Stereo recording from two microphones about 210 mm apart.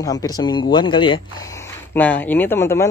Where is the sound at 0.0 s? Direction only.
15° left (ahead or behind).